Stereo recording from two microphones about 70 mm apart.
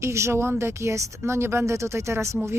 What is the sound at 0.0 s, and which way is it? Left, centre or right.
A woman's voice, right.